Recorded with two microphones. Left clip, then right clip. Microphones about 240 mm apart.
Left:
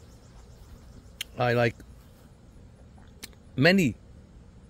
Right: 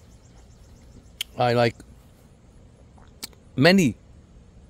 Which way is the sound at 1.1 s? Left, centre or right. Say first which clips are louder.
Right 4 dB; centre.